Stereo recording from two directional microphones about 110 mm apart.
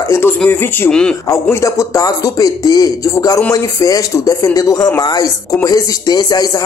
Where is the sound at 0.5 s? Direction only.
10° left (ahead or behind).